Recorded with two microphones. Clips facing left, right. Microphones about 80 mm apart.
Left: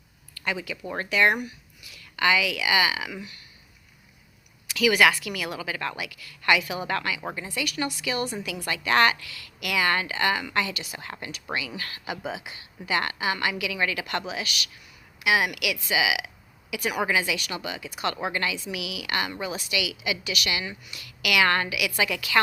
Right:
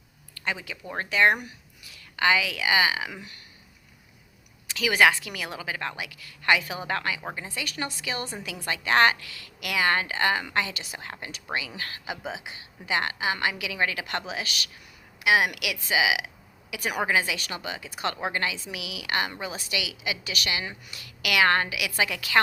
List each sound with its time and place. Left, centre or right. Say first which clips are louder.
0.3 s speech: left 2 dB; right
4.7 s a woman's voice: left 1 dB; right